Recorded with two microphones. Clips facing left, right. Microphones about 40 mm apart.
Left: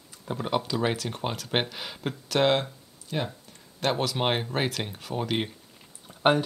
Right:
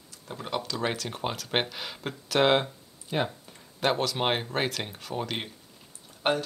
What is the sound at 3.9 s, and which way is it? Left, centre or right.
Speech, centre.